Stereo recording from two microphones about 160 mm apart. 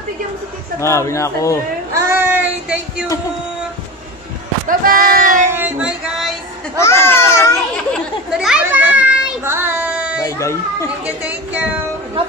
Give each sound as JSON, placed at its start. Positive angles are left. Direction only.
{"t": 0.7, "sound": "a man's voice", "side_deg": 20}
{"t": 2.0, "sound": "child singing", "side_deg": -15}
{"t": 4.6, "sound": "speech", "side_deg": -60}
{"t": 5.6, "sound": "a sound", "side_deg": -5}
{"t": 6.8, "sound": "a sound", "side_deg": 15}
{"t": 7.9, "sound": "speech", "side_deg": 0}
{"t": 8.6, "sound": "child singing", "side_deg": -10}
{"t": 10.2, "sound": "speech", "side_deg": 20}
{"t": 11.1, "sound": "speech", "side_deg": -10}